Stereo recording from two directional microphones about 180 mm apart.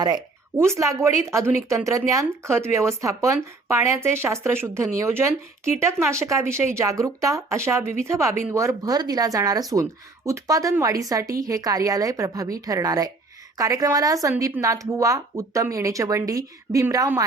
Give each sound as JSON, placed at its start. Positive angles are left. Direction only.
{"t": 0.0, "sound": "speech", "side_deg": -20}